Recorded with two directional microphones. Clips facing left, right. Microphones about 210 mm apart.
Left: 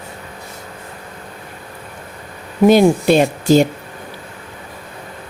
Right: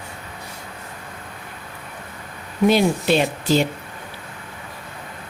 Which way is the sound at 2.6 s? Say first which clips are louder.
Left 7 dB; 45° left (ahead or behind).